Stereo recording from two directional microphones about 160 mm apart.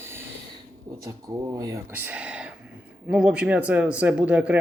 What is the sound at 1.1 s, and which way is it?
Speech, 20° right (ahead or behind).